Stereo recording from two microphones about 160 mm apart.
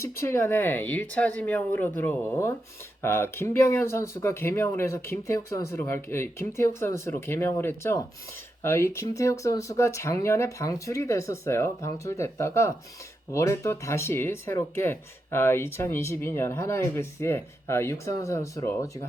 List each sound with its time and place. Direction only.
0.0 s speech: 15° left (ahead or behind)